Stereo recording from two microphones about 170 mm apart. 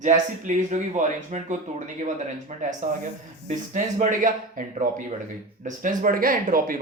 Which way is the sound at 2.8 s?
50° right (ahead or behind).